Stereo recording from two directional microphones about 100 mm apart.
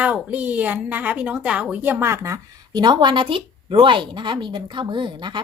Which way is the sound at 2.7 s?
50° right (ahead or behind).